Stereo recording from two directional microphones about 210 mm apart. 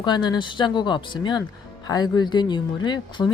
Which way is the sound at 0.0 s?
20° left (ahead or behind).